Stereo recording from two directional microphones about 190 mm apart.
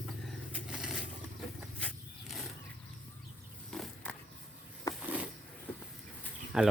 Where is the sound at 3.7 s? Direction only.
5° left (ahead or behind).